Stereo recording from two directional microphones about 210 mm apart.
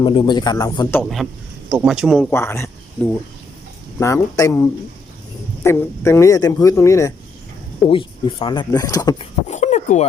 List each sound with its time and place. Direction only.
0.0 s speech: 25° left (ahead or behind)
1.7 s speech: 5° right (ahead or behind)
2.3 s speech: 10° left (ahead or behind)
7.9 s speech: 25° left (ahead or behind)
9.5 s speech: 35° left (ahead or behind)